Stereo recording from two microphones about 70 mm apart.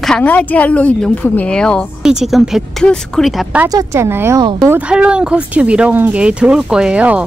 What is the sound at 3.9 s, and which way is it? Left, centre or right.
Speech, right.